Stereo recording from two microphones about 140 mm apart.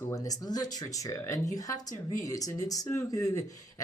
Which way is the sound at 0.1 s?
25° left (ahead or behind).